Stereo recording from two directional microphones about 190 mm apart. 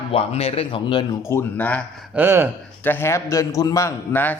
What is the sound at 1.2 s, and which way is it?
Speech, 15° left (ahead or behind).